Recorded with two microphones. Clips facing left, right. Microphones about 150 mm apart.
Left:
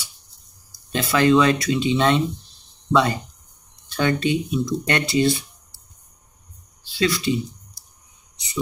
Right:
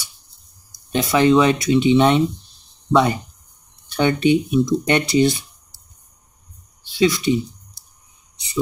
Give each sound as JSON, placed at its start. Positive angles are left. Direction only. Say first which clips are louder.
{"t": 1.1, "sound": "speech", "louder": "right 2 dB", "side_deg": -20}
{"t": 6.9, "sound": "speech", "louder": "right 4 dB", "side_deg": -20}